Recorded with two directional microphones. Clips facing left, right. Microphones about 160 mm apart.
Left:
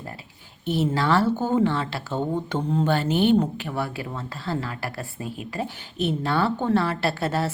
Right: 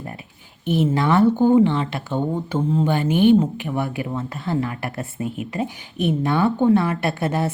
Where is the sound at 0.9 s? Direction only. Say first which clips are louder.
Right 6 dB; 20° right (ahead or behind).